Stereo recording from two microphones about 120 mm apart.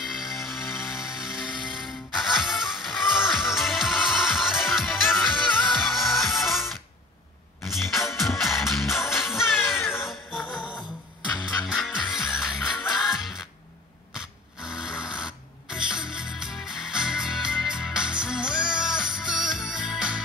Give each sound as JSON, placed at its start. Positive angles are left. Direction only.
{"t": 0.0, "sound": "music", "side_deg": 0}
{"t": 7.6, "sound": "music", "side_deg": 0}
{"t": 9.8, "sound": "music", "side_deg": 20}
{"t": 11.6, "sound": "music", "side_deg": 0}
{"t": 14.1, "sound": "a sound", "side_deg": -5}